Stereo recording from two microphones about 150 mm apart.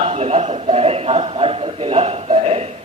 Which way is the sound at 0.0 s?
45° right (ahead or behind).